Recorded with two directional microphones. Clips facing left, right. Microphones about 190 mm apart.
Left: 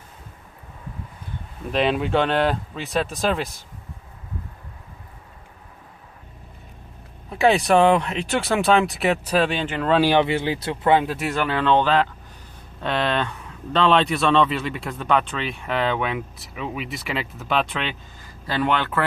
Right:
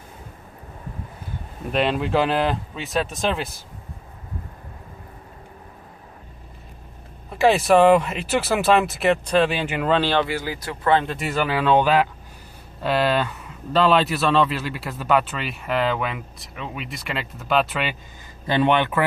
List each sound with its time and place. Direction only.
1.7 s speech: centre (ahead or behind)
7.3 s speech: centre (ahead or behind)
9.5 s speech: 5° right (ahead or behind)
9.9 s speech: 10° left (ahead or behind)
10.9 s speech: 5° left (ahead or behind)
18.4 s speech: 20° right (ahead or behind)